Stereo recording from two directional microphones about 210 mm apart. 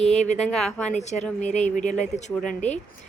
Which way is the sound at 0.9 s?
35° left (ahead or behind).